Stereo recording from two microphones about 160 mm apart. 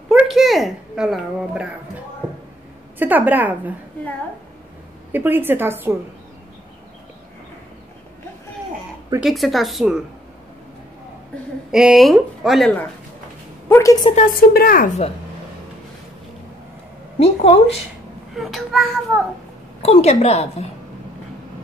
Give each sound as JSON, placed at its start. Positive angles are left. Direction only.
{"t": 0.1, "sound": "a sound", "side_deg": 0}
{"t": 3.0, "sound": "a woman's voice", "side_deg": -10}
{"t": 5.1, "sound": "a woman's voice", "side_deg": -10}
{"t": 9.2, "sound": "speech", "side_deg": 0}
{"t": 11.7, "sound": "speech", "side_deg": -5}
{"t": 13.7, "sound": "a woman's voice", "side_deg": 15}
{"t": 14.1, "sound": "speech", "side_deg": 60}
{"t": 17.2, "sound": "a woman's voice", "side_deg": 40}
{"t": 18.3, "sound": "speech", "side_deg": 0}
{"t": 19.8, "sound": "a woman's voice", "side_deg": 40}